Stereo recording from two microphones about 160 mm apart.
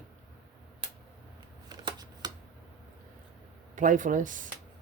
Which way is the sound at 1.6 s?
25° right (ahead or behind).